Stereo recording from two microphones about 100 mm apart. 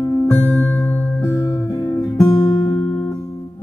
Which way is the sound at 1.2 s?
30° left (ahead or behind).